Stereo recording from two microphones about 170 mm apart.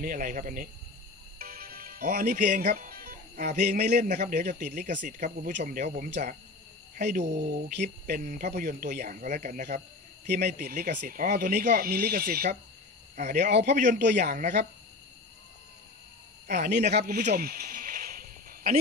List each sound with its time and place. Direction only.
0.0 s speech: 55° right (ahead or behind)
1.4 s music: 60° right (ahead or behind)
3.8 s speech: 45° right (ahead or behind)
10.2 s speech: 70° right (ahead or behind)
10.6 s speech: 55° right (ahead or behind)
13.5 s a man's voice: 85° right
13.7 s speech: 50° right (ahead or behind)
16.4 s speech: 45° right (ahead or behind)
16.9 s snake: 55° right (ahead or behind)